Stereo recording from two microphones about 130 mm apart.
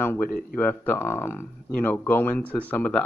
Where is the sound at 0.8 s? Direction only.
15° left (ahead or behind).